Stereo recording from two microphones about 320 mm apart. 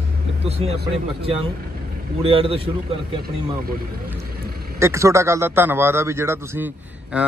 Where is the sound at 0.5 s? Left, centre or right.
Centre.